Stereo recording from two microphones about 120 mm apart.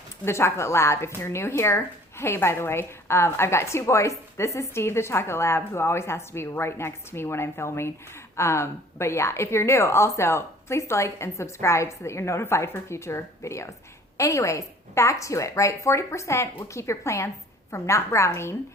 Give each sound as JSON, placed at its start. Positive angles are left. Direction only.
{"t": 0.3, "sound": "speech", "side_deg": 20}